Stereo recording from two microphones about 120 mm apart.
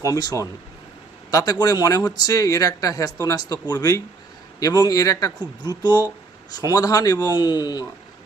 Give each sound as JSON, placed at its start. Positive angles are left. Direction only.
{"t": 0.0, "sound": "speech", "side_deg": 30}